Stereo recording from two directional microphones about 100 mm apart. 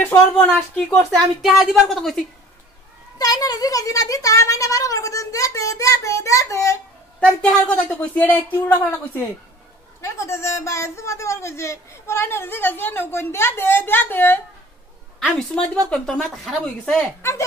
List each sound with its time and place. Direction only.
0.0 s a woman's voice: 20° left (ahead or behind)
1.4 s a woman's voice: centre (ahead or behind)
3.2 s speech: 40° left (ahead or behind)
7.2 s a woman's voice: 10° left (ahead or behind)
10.0 s speech: 30° left (ahead or behind)
15.1 s a woman's voice: 5° left (ahead or behind)